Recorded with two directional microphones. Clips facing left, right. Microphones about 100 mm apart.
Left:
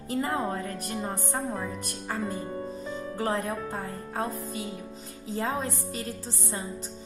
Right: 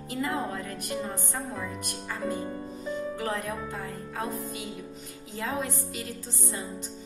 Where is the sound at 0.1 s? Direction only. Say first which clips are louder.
Left 2 dB; 35° left (ahead or behind).